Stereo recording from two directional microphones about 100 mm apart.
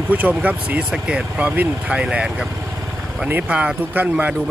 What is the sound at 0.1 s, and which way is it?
Speech, 15° right (ahead or behind).